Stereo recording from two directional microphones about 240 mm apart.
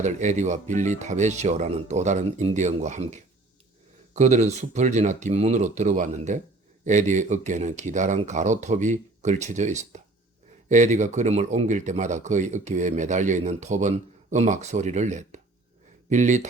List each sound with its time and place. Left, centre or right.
0.0 s speech: right